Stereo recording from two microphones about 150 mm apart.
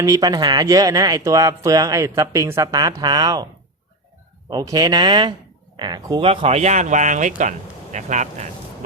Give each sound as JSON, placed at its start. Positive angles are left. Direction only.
{"t": 0.0, "sound": "speech", "side_deg": -25}
{"t": 4.4, "sound": "speech", "side_deg": -25}